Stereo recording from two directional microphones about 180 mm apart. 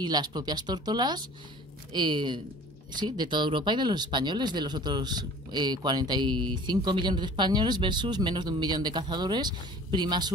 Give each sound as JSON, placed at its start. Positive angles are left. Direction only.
{"t": 0.0, "sound": "speech", "side_deg": -25}